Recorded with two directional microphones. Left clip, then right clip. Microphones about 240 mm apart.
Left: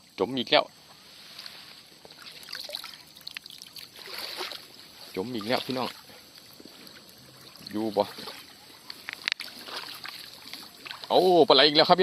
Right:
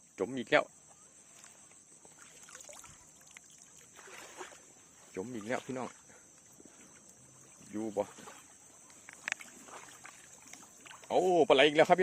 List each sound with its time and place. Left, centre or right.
0.2 s speech: centre
4.1 s boat: left
5.1 s speech: centre
7.7 s speech: centre
8.1 s speech: centre
10.5 s rowboat: centre